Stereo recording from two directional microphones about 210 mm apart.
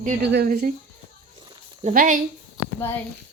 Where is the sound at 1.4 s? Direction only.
30° right (ahead or behind).